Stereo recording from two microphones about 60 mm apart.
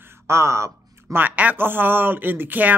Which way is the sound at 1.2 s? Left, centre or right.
Right.